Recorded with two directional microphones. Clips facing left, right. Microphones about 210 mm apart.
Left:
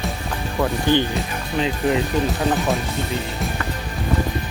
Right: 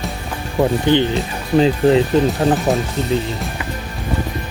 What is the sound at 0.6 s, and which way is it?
Speech, 20° right (ahead or behind).